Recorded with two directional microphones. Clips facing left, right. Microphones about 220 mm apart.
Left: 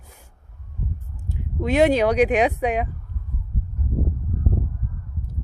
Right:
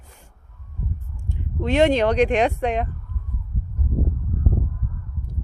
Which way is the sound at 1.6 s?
10° left (ahead or behind).